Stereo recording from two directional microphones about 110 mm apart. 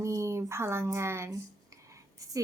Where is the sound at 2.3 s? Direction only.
30° right (ahead or behind).